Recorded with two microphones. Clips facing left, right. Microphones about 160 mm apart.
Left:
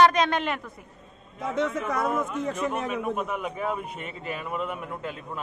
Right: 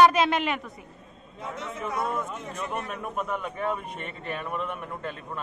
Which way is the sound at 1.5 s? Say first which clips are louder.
Left 7 dB; 90° left.